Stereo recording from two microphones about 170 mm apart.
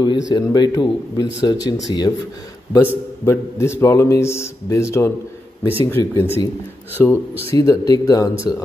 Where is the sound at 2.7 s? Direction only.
15° left (ahead or behind).